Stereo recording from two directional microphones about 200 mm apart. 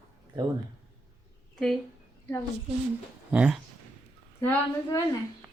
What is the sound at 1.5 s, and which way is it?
Speech, centre (ahead or behind).